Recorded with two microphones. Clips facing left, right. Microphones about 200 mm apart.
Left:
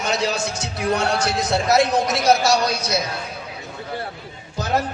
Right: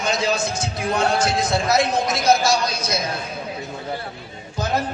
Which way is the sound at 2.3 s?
70° left (ahead or behind).